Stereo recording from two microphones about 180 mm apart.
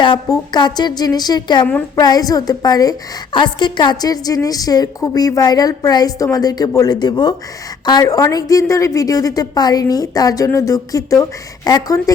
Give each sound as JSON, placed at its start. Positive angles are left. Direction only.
{"t": 0.0, "sound": "a woman's voice", "side_deg": 25}